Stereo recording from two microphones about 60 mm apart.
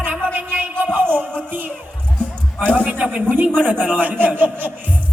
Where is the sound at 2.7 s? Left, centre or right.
Right.